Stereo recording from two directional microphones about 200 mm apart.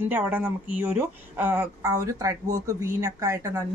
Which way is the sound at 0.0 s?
10° right (ahead or behind).